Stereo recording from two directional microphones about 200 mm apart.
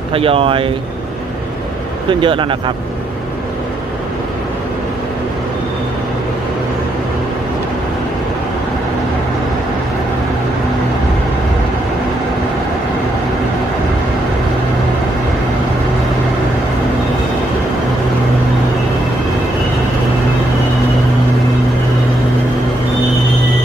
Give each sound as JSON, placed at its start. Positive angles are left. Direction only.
{"t": 0.1, "sound": "speech", "side_deg": -30}
{"t": 2.0, "sound": "speech", "side_deg": -25}